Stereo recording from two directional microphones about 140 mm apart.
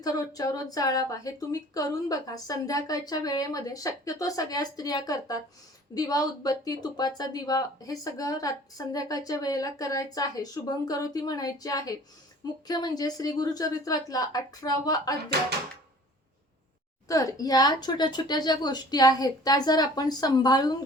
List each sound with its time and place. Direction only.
0.0 s speech: 25° left (ahead or behind)
17.1 s speech: 25° left (ahead or behind)